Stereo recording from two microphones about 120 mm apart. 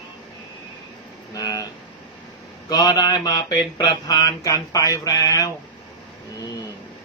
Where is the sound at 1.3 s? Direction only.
30° left (ahead or behind).